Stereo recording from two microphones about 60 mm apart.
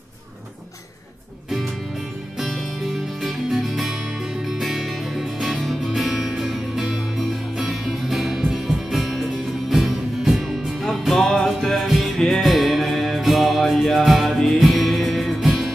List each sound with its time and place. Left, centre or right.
2.3 s music: centre